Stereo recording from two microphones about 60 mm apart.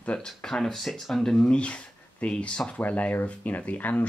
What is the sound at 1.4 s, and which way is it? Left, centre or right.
Speech, centre.